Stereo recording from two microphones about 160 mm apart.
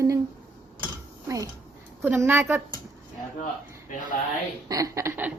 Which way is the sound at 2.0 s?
15° right (ahead or behind).